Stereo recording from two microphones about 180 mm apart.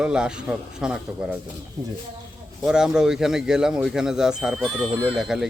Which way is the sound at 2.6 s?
5° right (ahead or behind).